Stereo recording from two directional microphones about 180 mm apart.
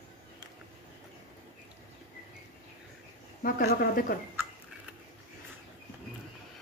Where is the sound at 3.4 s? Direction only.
50° left (ahead or behind).